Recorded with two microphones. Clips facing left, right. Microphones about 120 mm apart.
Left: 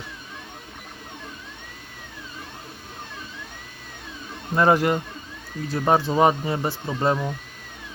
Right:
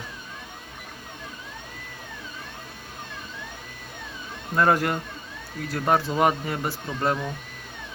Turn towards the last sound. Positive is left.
turn(degrees=20)  # may be behind; listen again after turning